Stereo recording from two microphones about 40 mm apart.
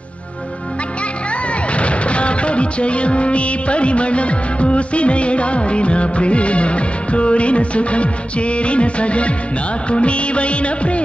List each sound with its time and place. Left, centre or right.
1.7 s music: left